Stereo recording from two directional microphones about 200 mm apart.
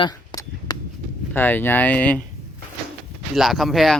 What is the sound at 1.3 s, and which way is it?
Speech, 10° left (ahead or behind).